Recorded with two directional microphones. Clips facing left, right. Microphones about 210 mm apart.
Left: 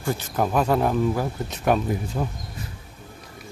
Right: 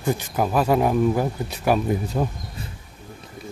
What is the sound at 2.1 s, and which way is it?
Speech, 40° right (ahead or behind).